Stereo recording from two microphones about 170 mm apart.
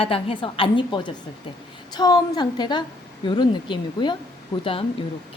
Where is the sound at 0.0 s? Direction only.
35° left (ahead or behind).